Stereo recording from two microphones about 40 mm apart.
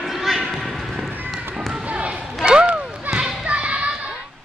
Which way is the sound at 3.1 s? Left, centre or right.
Right.